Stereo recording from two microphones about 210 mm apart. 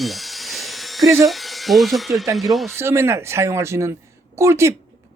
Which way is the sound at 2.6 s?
10° right (ahead or behind).